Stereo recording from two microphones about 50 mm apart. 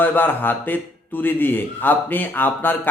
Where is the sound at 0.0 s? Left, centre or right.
Left.